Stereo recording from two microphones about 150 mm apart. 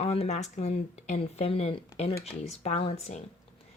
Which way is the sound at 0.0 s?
40° left (ahead or behind).